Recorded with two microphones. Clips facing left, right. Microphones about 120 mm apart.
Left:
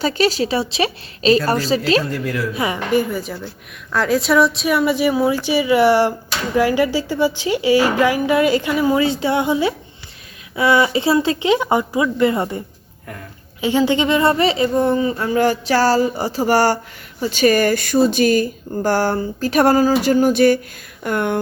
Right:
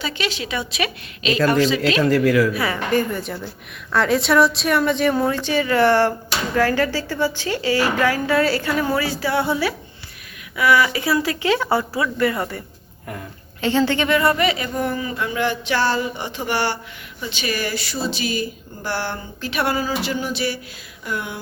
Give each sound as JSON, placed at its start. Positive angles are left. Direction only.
{"t": 0.0, "sound": "speech", "side_deg": 40}
{"t": 2.0, "sound": "speech", "side_deg": -90}
{"t": 2.5, "sound": "speech", "side_deg": 20}
{"t": 13.6, "sound": "speech", "side_deg": 10}